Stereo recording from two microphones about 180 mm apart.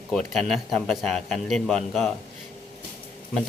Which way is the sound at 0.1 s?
Centre (ahead or behind).